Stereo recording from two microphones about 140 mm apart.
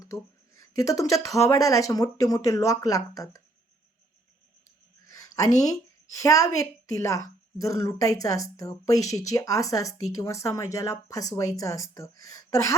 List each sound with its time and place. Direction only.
0.0 s speech: 20° left (ahead or behind)
5.0 s a sound: 25° left (ahead or behind)
5.5 s speech: 25° left (ahead or behind)